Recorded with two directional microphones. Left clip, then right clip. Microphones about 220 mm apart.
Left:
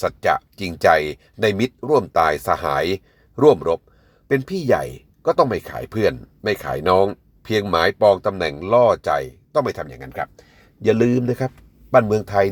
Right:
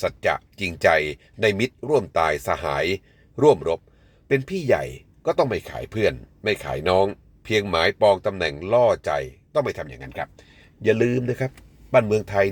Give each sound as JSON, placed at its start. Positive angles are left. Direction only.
{"t": 0.0, "sound": "speech", "side_deg": 20}